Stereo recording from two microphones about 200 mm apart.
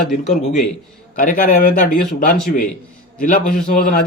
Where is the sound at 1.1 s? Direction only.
45° left (ahead or behind).